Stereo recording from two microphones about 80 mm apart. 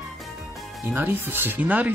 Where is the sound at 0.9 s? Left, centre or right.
Right.